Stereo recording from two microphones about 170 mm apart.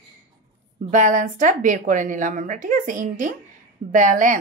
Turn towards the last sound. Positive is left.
turn(degrees=-50)  # may be behind; listen again after turning